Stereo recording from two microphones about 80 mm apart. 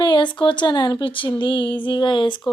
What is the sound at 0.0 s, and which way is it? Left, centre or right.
A woman's voice, left.